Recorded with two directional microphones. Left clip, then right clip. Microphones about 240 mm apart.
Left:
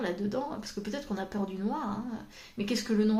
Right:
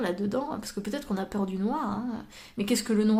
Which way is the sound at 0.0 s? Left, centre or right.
Right.